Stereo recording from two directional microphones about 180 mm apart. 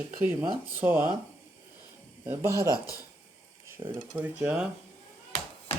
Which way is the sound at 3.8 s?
20° right (ahead or behind).